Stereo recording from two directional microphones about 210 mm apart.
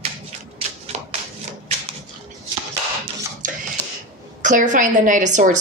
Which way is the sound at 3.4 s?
40° right (ahead or behind).